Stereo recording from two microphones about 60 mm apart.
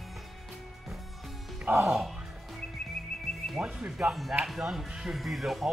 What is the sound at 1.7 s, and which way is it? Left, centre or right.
Speech, right.